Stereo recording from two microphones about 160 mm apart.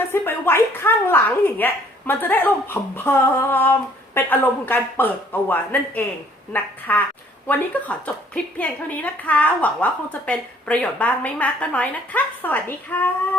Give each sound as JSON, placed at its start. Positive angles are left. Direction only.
{"t": 0.1, "sound": "a woman's voice", "side_deg": 15}